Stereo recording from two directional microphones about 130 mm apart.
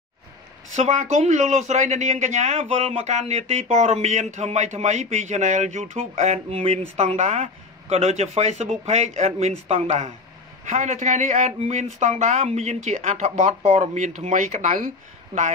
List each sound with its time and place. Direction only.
0.7 s a man's voice: 65° right (ahead or behind); by 14.9 s 80° right